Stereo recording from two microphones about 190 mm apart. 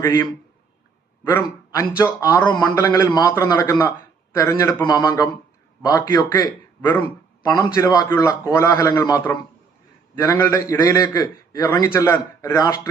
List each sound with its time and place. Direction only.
0.0 s a man's voice: 15° left (ahead or behind)
1.3 s a man's voice: 20° left (ahead or behind)